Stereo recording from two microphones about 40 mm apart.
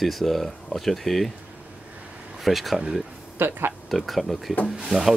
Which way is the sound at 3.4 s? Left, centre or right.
Right.